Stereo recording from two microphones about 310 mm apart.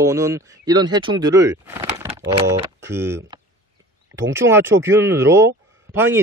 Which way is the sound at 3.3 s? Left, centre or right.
Centre.